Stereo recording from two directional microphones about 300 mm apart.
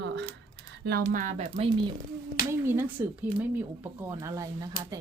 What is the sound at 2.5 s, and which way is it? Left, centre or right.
Speech, centre.